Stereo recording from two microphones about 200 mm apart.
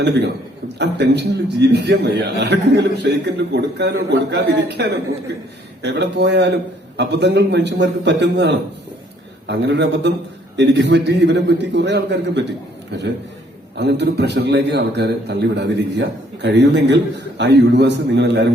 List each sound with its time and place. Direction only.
0.0 s a man's voice: 60° right (ahead or behind)
13.7 s a man's voice: 55° right (ahead or behind)